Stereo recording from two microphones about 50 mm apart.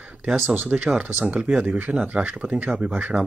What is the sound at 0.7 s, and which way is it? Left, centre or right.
Speech, right.